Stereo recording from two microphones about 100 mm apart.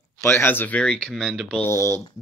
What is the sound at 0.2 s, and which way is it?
Speech, 25° left (ahead or behind).